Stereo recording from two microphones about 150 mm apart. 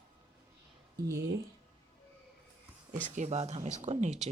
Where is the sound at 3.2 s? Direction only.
45° right (ahead or behind).